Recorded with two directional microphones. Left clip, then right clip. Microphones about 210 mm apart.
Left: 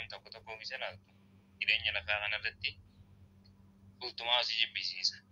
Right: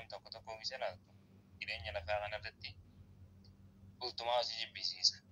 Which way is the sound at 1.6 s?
25° right (ahead or behind).